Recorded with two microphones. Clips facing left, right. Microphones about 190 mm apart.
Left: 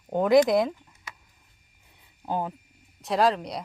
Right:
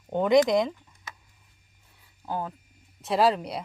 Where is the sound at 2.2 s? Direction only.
20° left (ahead or behind).